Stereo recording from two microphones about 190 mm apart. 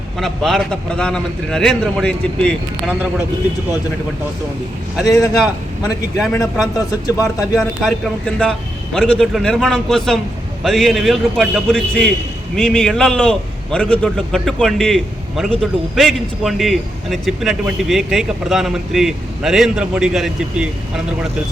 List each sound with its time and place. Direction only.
0.2 s a man's voice: centre (ahead or behind)
4.9 s a man's voice: centre (ahead or behind)
6.7 s speech: 20° left (ahead or behind)
7.5 s a man's voice: centre (ahead or behind)